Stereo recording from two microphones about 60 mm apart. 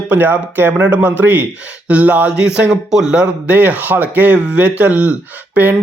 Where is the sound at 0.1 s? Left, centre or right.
Right.